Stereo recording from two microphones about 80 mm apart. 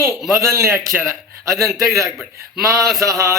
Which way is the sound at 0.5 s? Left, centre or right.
Right.